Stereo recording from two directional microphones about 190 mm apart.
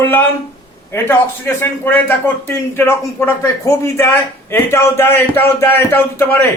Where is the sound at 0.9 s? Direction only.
15° left (ahead or behind).